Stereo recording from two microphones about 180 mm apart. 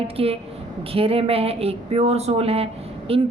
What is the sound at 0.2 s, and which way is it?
A woman's voice, 30° right (ahead or behind).